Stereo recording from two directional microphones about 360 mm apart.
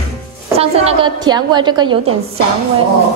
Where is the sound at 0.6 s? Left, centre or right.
Centre.